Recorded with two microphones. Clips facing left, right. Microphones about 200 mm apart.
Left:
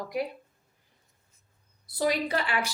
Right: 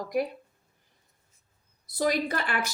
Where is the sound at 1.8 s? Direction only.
45° right (ahead or behind).